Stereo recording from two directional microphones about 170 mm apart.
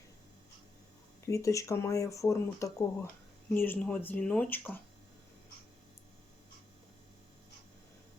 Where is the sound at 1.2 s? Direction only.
20° left (ahead or behind).